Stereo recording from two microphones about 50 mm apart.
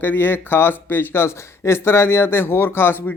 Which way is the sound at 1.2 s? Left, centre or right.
Left.